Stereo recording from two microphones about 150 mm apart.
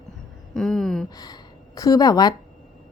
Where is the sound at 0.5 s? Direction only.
5° left (ahead or behind).